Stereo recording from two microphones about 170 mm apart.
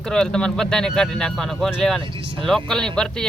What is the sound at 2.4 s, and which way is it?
Speech, centre (ahead or behind).